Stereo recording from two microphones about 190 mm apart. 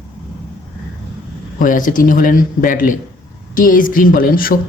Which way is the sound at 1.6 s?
45° left (ahead or behind).